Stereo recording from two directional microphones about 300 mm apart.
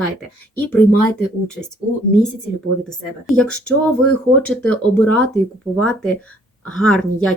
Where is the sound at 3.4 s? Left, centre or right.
Left.